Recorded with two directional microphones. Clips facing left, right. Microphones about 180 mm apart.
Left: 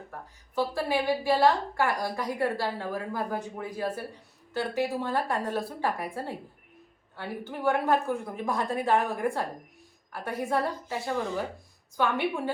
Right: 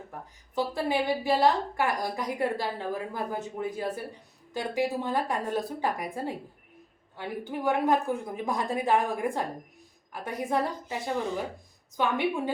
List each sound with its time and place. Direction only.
0.5 s a woman's voice: 20° right (ahead or behind)